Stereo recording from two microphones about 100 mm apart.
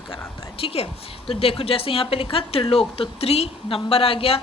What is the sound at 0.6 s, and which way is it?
A woman's voice, 70° left (ahead or behind).